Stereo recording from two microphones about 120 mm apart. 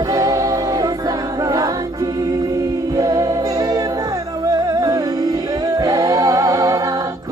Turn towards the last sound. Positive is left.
turn(degrees=-30)  # may be behind; listen again after turning